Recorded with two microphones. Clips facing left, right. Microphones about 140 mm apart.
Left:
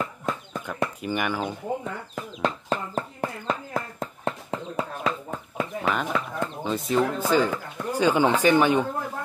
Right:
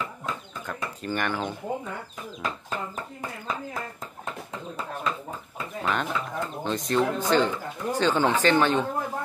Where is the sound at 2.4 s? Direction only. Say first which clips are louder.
Left 6 dB; 65° left (ahead or behind).